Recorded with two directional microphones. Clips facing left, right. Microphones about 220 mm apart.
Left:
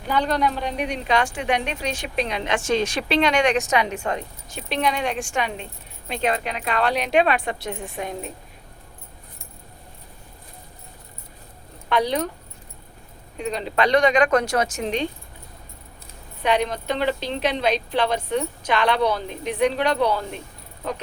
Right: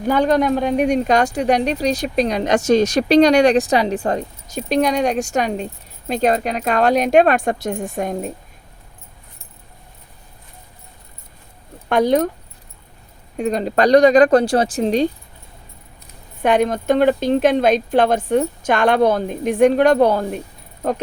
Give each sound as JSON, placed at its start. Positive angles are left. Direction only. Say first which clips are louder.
{"t": 0.0, "sound": "speech", "louder": "right 7 dB", "side_deg": -45}
{"t": 11.9, "sound": "speech", "louder": "right 7 dB", "side_deg": -45}
{"t": 13.3, "sound": "speech", "louder": "right 6 dB", "side_deg": -45}
{"t": 16.4, "sound": "speech", "louder": "right 6 dB", "side_deg": -50}